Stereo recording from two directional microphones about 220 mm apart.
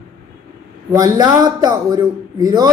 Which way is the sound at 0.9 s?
15° right (ahead or behind).